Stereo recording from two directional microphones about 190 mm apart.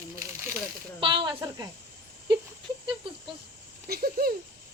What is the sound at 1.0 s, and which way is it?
Speech, 25° right (ahead or behind).